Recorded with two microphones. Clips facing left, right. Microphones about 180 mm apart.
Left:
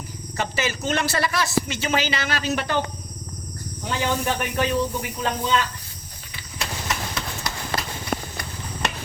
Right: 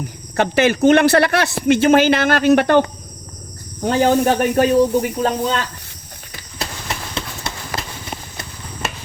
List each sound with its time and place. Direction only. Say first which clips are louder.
0.3 s speech: right 11 dB; 60° right (ahead or behind)
3.8 s speech: right 10 dB; 55° right (ahead or behind)
4.4 s speech: right 10 dB; 45° right (ahead or behind)
6.6 s clip-clop: right 1 dB; 30° right (ahead or behind)
8.1 s a sound: left 6 dB; 60° left (ahead or behind)